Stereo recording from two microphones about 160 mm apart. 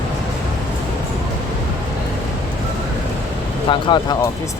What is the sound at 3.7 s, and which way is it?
Speech, 30° left (ahead or behind).